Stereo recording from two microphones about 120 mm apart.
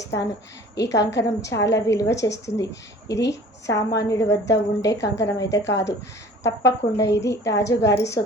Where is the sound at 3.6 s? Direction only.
25° left (ahead or behind).